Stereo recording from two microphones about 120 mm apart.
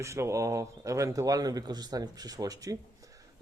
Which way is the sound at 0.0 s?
25° right (ahead or behind).